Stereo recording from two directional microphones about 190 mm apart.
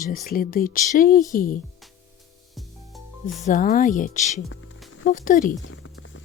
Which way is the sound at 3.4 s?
40° left (ahead or behind).